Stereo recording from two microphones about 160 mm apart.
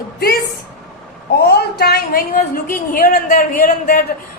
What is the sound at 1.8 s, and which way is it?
A woman's voice, 75° left (ahead or behind).